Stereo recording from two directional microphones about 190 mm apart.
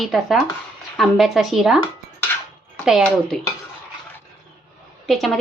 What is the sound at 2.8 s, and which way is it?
Speech, centre (ahead or behind).